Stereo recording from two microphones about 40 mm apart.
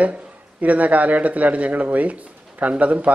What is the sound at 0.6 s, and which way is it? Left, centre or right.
Speech, right.